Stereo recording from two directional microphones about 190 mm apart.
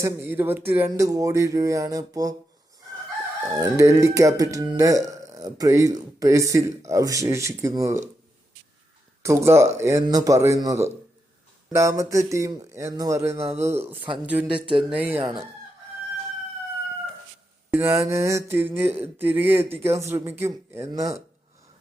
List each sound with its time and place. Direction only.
0.0 s speech: 10° right (ahead or behind)
3.5 s speech: 15° right (ahead or behind)
9.2 s speech: 15° right (ahead or behind)
13.4 s speech: 35° right (ahead or behind)
14.3 s speech: 5° right (ahead or behind)
17.7 s speech: 10° right (ahead or behind)